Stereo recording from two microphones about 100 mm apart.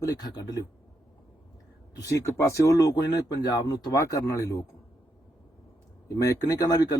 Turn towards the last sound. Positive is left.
turn(degrees=40)  # may be behind; listen again after turning